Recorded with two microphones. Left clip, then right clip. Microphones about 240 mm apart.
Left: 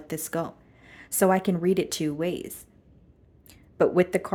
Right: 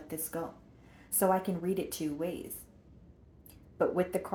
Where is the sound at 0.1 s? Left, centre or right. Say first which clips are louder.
Left 8 dB; left.